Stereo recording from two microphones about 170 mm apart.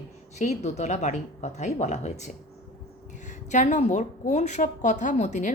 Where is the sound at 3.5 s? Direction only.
45° left (ahead or behind).